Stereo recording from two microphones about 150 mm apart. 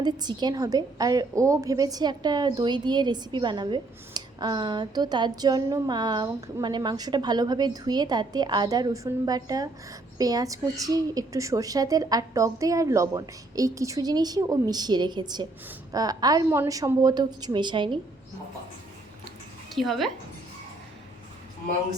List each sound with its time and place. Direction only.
0.0 s a woman's voice: 30° right (ahead or behind)
19.7 s a woman's voice: centre (ahead or behind)